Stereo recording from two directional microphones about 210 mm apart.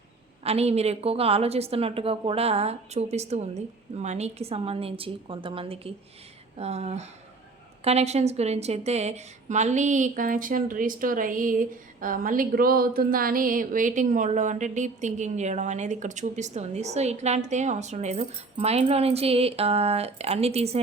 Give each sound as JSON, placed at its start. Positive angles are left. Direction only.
{"t": 0.4, "sound": "a woman's voice", "side_deg": -30}